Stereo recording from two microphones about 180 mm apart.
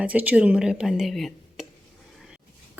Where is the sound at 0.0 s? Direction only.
10° right (ahead or behind).